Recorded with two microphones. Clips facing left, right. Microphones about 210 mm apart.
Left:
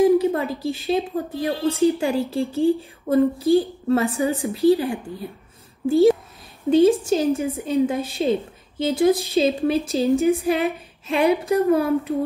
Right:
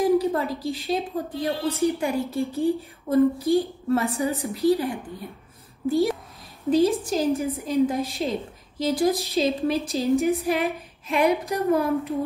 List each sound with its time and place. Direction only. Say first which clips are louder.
0.2 s a woman's voice: left 3 dB; 25° left (ahead or behind)